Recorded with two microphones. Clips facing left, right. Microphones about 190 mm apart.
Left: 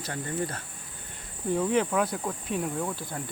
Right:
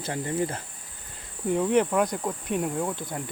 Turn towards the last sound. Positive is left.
turn(degrees=-20)  # may be behind; listen again after turning